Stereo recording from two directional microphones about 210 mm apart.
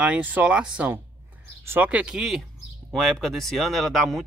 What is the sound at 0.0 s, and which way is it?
Speech, 5° right (ahead or behind).